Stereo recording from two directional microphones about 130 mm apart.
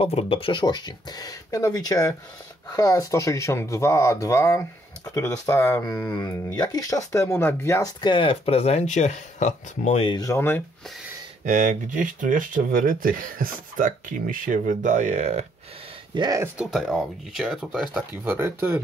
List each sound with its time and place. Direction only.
0.0 s speech: 45° left (ahead or behind); by 7.9 s 20° left (ahead or behind)
8.0 s speech: 40° left (ahead or behind); by 10.0 s 65° left (ahead or behind)
10.0 s speech: 35° left (ahead or behind)
10.3 s speech: 15° left (ahead or behind)
11.4 s speech: 85° right; by 15.4 s 65° right (ahead or behind)
16.2 s speech: 30° right (ahead or behind)
16.5 s speech: centre (ahead or behind)
18.2 s speech: 15° right (ahead or behind)